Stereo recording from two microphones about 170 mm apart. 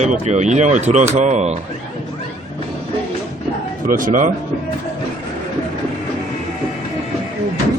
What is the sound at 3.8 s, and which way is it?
Speech, 55° right (ahead or behind).